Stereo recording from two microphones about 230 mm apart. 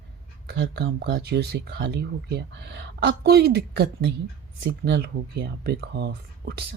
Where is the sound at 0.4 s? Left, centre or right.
Right.